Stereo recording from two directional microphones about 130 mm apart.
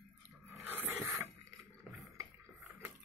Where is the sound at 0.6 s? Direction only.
15° right (ahead or behind).